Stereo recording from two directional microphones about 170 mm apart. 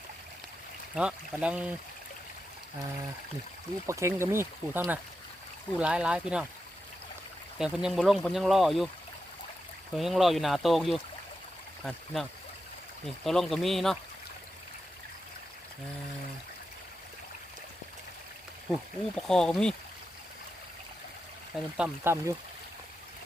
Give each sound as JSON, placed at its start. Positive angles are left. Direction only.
{"t": 0.9, "sound": "speech", "side_deg": -5}
{"t": 3.8, "sound": "speech", "side_deg": -15}
{"t": 7.6, "sound": "speech", "side_deg": -5}
{"t": 9.9, "sound": "speech", "side_deg": 0}
{"t": 18.7, "sound": "speech", "side_deg": 5}
{"t": 21.8, "sound": "speech", "side_deg": -10}